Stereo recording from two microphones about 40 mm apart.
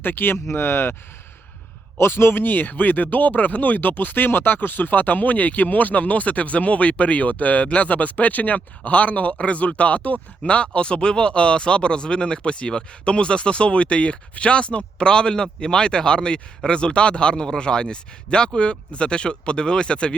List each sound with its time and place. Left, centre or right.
0.0 s speech: left
2.0 s speech: left
4.3 s speech: left